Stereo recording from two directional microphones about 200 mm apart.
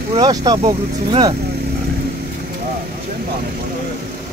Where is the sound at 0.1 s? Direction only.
20° right (ahead or behind).